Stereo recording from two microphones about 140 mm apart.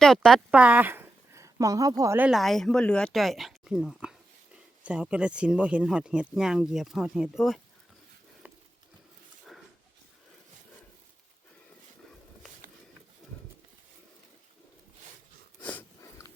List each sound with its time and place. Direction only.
0.0 s speech: 5° left (ahead or behind)
0.5 s speech: 10° right (ahead or behind); by 2.1 s 25° right (ahead or behind)
2.1 s speech: 10° right (ahead or behind)
2.4 s speech: centre (ahead or behind)